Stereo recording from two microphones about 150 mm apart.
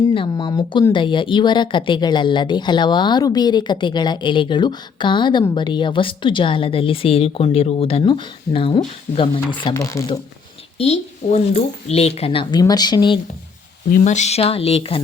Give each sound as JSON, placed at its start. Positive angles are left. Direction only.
{"t": 0.1, "sound": "speech", "side_deg": 30}
{"t": 10.8, "sound": "speech", "side_deg": 45}
{"t": 13.9, "sound": "speech", "side_deg": 55}